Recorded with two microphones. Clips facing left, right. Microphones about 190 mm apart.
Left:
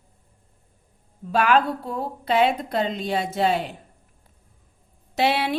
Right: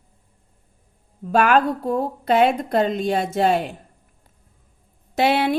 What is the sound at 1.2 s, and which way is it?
A woman's voice, 50° right (ahead or behind).